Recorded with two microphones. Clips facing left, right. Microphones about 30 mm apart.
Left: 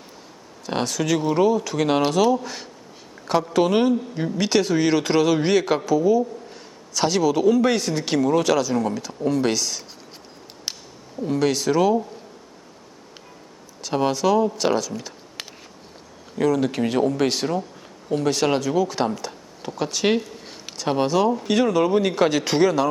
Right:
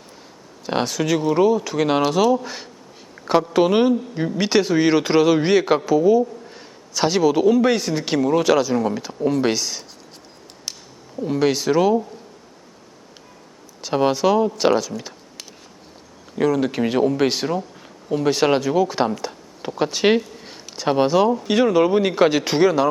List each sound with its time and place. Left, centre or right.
0.7 s a man's voice: centre
11.2 s a man's voice: centre
13.8 s a man's voice: centre
16.4 s a man's voice: centre